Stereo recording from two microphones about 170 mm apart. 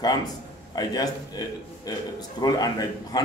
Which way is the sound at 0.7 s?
20° left (ahead or behind).